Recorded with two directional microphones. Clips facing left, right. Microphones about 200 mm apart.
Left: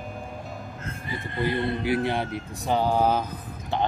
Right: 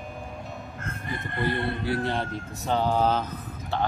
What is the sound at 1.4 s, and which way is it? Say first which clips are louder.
Speech: left 2 dB; 15° left (ahead or behind).